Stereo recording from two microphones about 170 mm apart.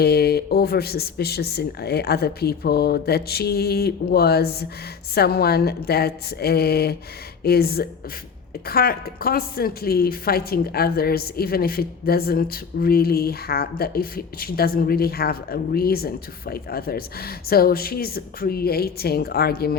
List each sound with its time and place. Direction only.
0.0 s a woman's voice: 70° left (ahead or behind)